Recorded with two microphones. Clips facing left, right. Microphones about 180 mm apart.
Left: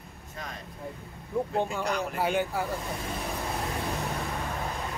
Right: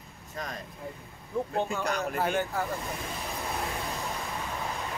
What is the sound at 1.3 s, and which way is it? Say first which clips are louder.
Speech: left 1 dB; 10° left (ahead or behind).